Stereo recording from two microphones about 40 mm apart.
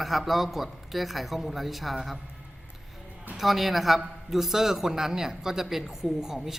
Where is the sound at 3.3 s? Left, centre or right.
Centre.